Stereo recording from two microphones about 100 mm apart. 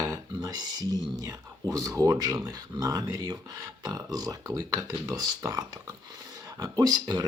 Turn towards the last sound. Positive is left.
turn(degrees=-45)  # may be behind; listen again after turning